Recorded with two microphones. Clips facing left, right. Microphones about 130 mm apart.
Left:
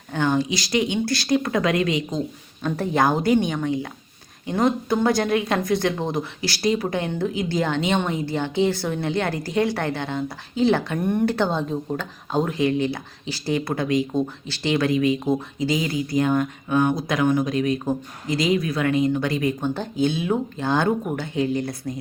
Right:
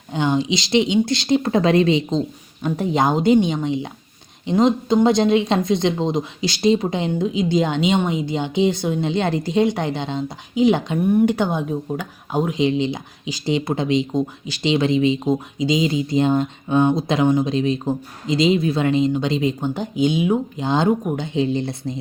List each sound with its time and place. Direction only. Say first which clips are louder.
0.1 s speech: right 2 dB; 20° right (ahead or behind)